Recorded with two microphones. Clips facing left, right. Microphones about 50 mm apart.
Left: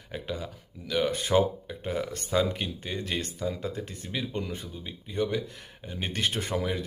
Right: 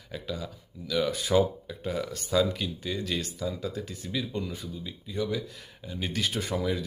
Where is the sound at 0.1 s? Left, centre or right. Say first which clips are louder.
Left 1 dB; left.